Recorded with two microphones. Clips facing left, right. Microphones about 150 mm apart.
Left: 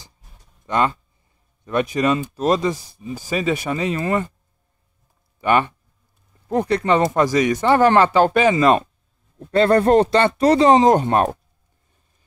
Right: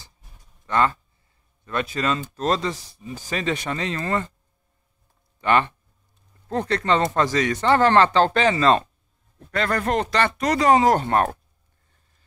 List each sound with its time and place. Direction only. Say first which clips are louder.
0.7 s speech: left 1 dB; 15° left (ahead or behind)
5.4 s speech: left 2 dB; 10° left (ahead or behind)
9.5 s speech: left 9 dB; 30° left (ahead or behind)